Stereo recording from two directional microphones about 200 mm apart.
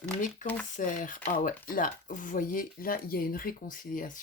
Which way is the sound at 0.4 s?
40° left (ahead or behind).